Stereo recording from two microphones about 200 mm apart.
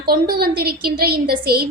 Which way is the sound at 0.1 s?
50° right (ahead or behind).